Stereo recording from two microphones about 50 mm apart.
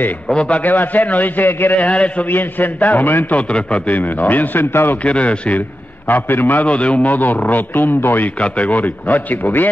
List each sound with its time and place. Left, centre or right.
0.3 s speech: left
0.7 s a man's voice: left
1.8 s speech: left
2.3 s a man's voice: left
3.3 s speech: left
3.9 s a man's voice: left
5.0 s speech: left
6.0 s a man's voice: left
6.6 s a man's voice: left
8.4 s a man's voice: left